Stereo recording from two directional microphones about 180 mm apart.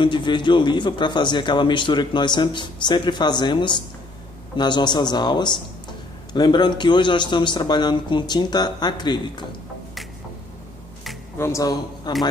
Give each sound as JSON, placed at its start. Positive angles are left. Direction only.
{"t": 0.0, "sound": "a man's voice", "side_deg": 25}
{"t": 11.3, "sound": "speech", "side_deg": 15}